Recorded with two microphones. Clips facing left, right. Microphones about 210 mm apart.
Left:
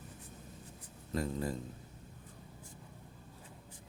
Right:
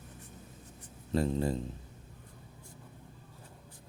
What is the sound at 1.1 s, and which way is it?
Speech, 25° right (ahead or behind).